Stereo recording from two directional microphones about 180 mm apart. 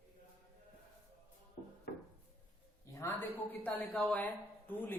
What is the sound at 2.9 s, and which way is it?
Speech, 15° left (ahead or behind).